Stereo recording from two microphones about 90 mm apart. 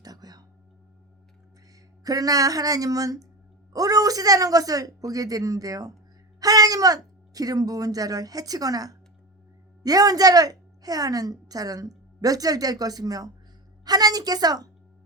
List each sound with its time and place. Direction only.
0.0 s music: 45° right (ahead or behind)
2.0 s a woman's voice: 40° right (ahead or behind)